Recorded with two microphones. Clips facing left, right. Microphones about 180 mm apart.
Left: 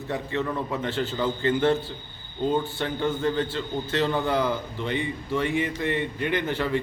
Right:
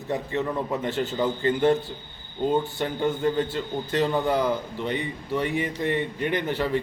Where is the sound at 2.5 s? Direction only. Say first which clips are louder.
Right 1 dB; 15° right (ahead or behind).